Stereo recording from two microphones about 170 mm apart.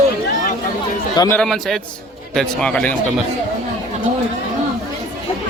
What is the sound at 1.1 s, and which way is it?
Speech, 20° left (ahead or behind).